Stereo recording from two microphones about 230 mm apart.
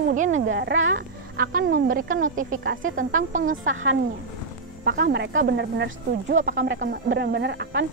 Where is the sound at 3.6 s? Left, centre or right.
Right.